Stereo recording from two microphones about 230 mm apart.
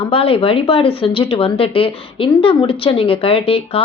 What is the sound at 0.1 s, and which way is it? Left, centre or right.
Speech, left.